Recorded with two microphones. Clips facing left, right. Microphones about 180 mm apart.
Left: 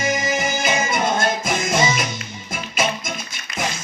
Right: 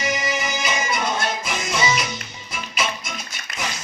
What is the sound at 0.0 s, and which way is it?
Music, 45° left (ahead or behind).